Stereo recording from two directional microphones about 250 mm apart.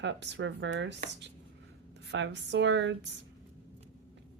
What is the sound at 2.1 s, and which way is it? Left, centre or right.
Speech, right.